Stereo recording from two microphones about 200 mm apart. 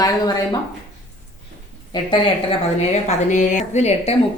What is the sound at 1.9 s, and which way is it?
Speech, 25° left (ahead or behind).